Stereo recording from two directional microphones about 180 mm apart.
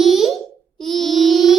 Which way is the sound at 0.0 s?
Centre (ahead or behind).